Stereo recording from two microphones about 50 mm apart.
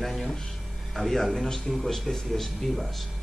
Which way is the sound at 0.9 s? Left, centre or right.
Centre.